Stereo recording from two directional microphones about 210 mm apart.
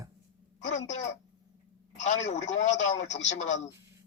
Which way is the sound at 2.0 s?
35° left (ahead or behind).